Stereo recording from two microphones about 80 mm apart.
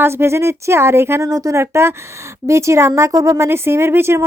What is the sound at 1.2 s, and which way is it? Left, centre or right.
Speech, right.